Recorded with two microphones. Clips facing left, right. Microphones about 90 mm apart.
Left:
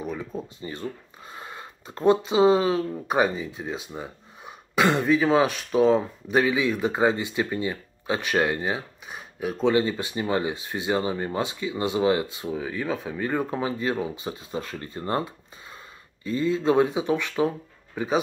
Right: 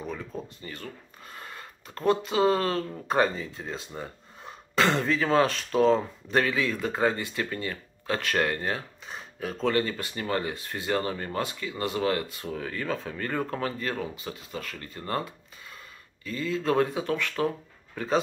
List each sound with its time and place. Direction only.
0.0 s speech: 10° left (ahead or behind)